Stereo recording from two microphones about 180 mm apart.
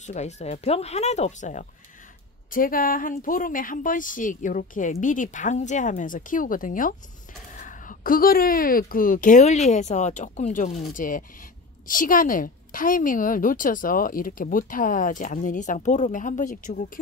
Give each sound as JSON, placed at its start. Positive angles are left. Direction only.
{"t": 0.0, "sound": "a woman's voice", "side_deg": 40}